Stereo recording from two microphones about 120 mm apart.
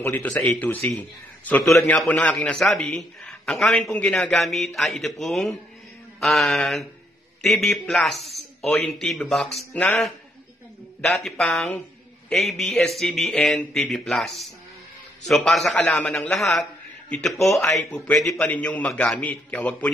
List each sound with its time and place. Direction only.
0.0 s a man's voice: 15° left (ahead or behind)